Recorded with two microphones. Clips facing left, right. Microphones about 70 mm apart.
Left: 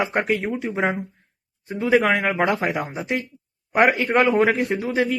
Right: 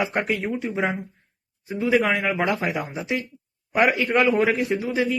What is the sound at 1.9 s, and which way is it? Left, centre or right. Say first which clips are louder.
Speech: left 3 dB; left.